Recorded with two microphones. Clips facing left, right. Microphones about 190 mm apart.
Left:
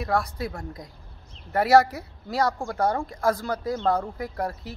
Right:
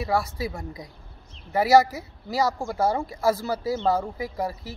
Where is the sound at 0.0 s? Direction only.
5° right (ahead or behind).